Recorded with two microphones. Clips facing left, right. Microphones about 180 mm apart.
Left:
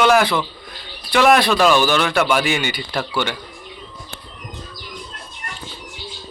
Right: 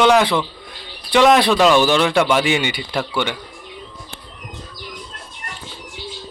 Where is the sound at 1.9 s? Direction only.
25° right (ahead or behind).